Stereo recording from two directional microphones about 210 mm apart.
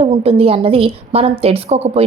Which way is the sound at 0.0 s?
30° right (ahead or behind).